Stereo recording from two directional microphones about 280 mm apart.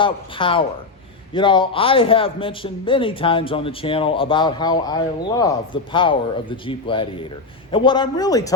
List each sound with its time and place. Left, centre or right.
0.0 s a man's voice: centre